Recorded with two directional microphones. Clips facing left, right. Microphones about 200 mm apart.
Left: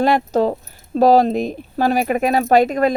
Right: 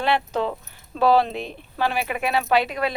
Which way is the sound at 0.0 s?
40° left (ahead or behind).